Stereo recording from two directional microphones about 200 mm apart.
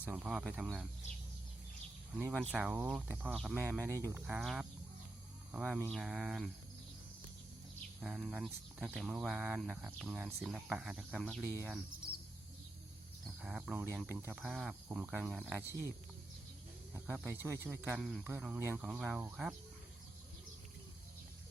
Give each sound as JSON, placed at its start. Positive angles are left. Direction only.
{"t": 0.0, "sound": "speech", "side_deg": -10}
{"t": 2.3, "sound": "speech", "side_deg": 0}
{"t": 3.6, "sound": "speech", "side_deg": -10}
{"t": 8.0, "sound": "speech", "side_deg": 0}
{"t": 11.4, "sound": "speech", "side_deg": -10}
{"t": 13.2, "sound": "speech", "side_deg": -5}
{"t": 14.4, "sound": "speech", "side_deg": 0}
{"t": 16.9, "sound": "speech", "side_deg": -10}
{"t": 18.0, "sound": "speech", "side_deg": 0}
{"t": 18.4, "sound": "speech", "side_deg": -10}